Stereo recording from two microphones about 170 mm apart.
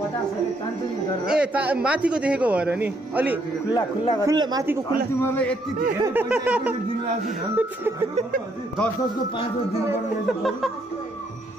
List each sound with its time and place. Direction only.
1.2 s a man's voice: 5° right (ahead or behind)
3.7 s speech: 25° left (ahead or behind)
4.3 s a woman's voice: 20° right (ahead or behind)
5.2 s a man's voice: 10° left (ahead or behind)
5.9 s a woman's voice: 20° right (ahead or behind)
6.2 s a man's voice: 5° right (ahead or behind)
10.2 s a sound: centre (ahead or behind)